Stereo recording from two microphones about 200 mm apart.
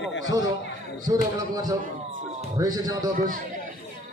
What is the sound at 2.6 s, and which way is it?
Speech, 20° right (ahead or behind).